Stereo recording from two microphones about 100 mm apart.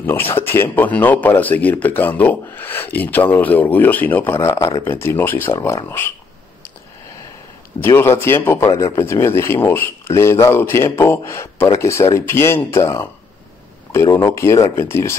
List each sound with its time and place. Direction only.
0.0 s speech: 20° left (ahead or behind)
7.8 s speech: 25° left (ahead or behind)